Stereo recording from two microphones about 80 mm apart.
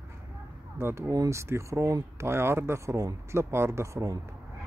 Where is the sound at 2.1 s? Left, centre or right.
Right.